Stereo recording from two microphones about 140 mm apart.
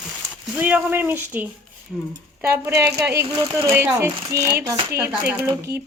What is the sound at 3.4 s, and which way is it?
Speech, 35° right (ahead or behind).